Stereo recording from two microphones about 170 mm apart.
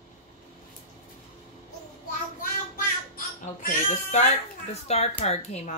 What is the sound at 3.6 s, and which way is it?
Speech, 45° left (ahead or behind).